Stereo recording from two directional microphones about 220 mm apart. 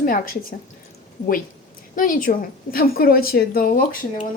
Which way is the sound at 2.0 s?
40° left (ahead or behind).